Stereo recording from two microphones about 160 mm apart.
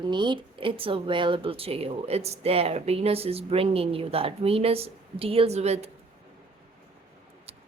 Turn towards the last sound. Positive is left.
turn(degrees=-40)  # may be behind; listen again after turning